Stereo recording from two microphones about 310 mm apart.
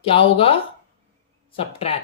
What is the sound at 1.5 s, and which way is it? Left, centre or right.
Speech, centre.